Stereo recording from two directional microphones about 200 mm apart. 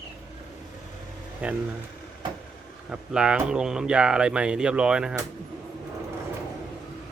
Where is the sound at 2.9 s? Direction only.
5° right (ahead or behind).